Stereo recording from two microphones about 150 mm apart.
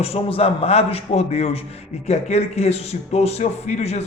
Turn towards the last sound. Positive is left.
turn(degrees=45)  # may be behind; listen again after turning